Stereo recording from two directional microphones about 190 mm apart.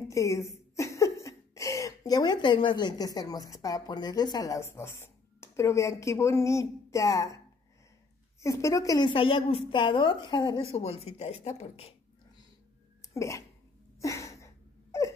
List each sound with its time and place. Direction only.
0.1 s speech: 15° left (ahead or behind)
8.4 s a woman's voice: 15° left (ahead or behind); by 11.9 s 30° left (ahead or behind)
13.1 s speech: 15° left (ahead or behind)
13.9 s a sound: 15° left (ahead or behind)